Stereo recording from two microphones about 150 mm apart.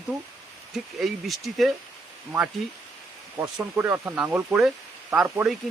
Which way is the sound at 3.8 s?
15° right (ahead or behind).